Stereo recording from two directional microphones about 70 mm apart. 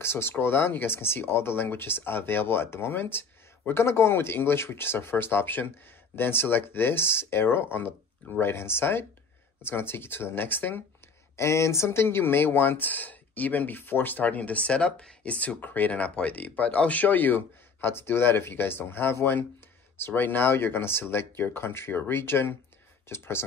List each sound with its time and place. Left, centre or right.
0.0 s speech: left
11.3 s speech: left